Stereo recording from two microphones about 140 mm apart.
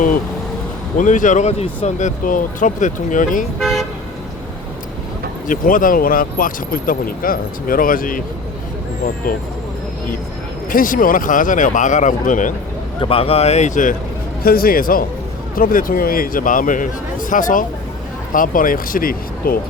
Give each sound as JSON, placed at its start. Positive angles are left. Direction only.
{"t": 0.9, "sound": "speech", "side_deg": 65}
{"t": 3.6, "sound": "toot", "side_deg": 0}
{"t": 5.5, "sound": "speech", "side_deg": 75}
{"t": 10.7, "sound": "a man's voice", "side_deg": 75}
{"t": 13.0, "sound": "speech", "side_deg": 40}
{"t": 14.4, "sound": "a man's voice", "side_deg": 90}